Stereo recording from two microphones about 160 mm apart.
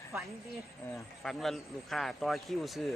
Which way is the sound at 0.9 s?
Centre (ahead or behind).